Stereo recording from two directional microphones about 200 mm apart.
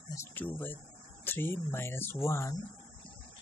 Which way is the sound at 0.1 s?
10° left (ahead or behind).